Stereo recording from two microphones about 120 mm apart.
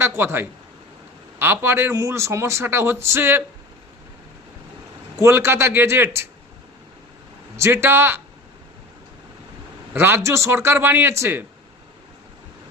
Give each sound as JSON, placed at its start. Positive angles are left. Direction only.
{"t": 0.2, "sound": "a man's voice", "side_deg": -20}
{"t": 5.2, "sound": "a man's voice", "side_deg": -20}
{"t": 7.5, "sound": "a man's voice", "side_deg": -20}
{"t": 9.9, "sound": "a man's voice", "side_deg": -20}